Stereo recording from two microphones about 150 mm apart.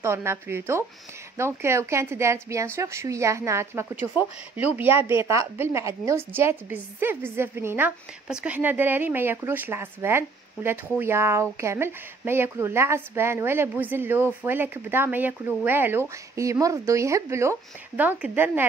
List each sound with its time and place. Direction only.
0.0 s a woman's voice: 15° right (ahead or behind)